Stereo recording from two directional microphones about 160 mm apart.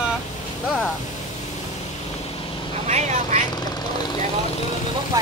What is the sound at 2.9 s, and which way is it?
Speech, 45° right (ahead or behind).